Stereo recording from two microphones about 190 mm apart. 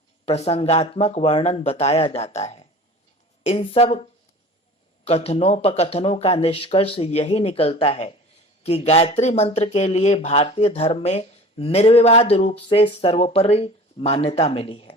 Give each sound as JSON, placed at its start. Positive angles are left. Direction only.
{"t": 0.3, "sound": "speech", "side_deg": 35}
{"t": 5.0, "sound": "speech", "side_deg": 35}